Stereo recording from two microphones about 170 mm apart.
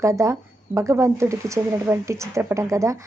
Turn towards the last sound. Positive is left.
turn(degrees=-20)  # may be behind; listen again after turning